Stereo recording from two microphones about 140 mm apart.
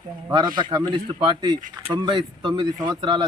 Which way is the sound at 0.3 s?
35° right (ahead or behind).